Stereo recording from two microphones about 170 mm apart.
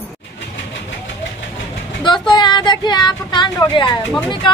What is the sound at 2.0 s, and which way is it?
Speech, 25° left (ahead or behind).